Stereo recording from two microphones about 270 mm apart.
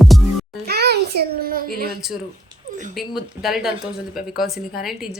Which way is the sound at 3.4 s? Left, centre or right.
Centre.